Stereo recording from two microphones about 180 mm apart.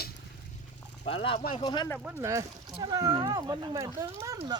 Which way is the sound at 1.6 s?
25° left (ahead or behind).